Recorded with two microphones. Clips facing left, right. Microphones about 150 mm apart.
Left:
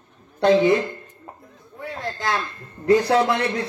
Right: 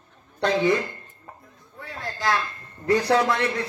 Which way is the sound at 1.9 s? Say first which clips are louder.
Even; 20° left (ahead or behind).